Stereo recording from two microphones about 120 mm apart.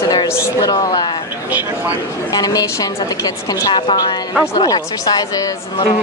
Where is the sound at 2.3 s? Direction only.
30° left (ahead or behind).